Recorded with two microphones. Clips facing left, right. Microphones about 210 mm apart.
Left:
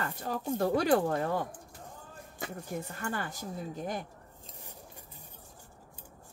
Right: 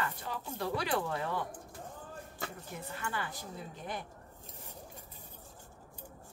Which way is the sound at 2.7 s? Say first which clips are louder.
Left 4 dB; 45° left (ahead or behind).